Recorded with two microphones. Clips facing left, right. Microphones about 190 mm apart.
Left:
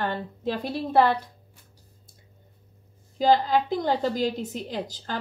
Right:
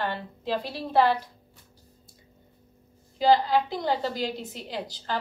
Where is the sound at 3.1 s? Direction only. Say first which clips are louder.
Even; 45° left (ahead or behind).